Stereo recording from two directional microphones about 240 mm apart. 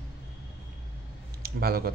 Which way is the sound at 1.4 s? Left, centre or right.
Right.